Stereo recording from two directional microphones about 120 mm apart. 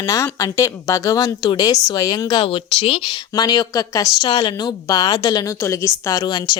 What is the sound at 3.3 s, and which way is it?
Speech, 35° left (ahead or behind).